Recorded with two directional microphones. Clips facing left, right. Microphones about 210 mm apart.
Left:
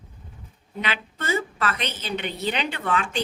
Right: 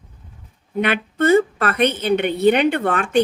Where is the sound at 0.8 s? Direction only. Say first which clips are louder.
Right 12 dB; 60° right (ahead or behind).